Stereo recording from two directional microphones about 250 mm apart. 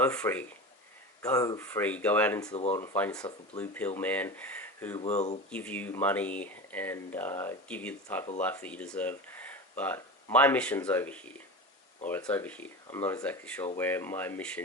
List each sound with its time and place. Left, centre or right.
0.0 s speech: centre
4.9 s speech: left
5.5 s speech: centre